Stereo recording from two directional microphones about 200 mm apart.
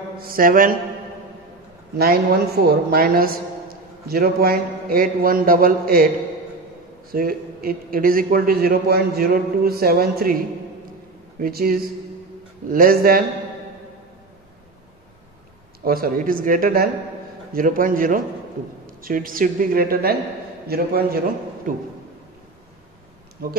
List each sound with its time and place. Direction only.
0.2 s a woman's voice: 45° right (ahead or behind)
2.0 s a woman's voice: 50° right (ahead or behind)
7.1 s a woman's voice: 45° right (ahead or behind)
15.8 s a woman's voice: 50° right (ahead or behind)